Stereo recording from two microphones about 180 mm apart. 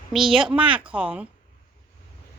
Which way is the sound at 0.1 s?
Centre (ahead or behind).